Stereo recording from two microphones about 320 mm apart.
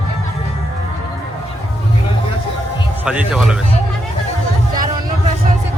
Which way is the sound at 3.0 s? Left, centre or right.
Centre.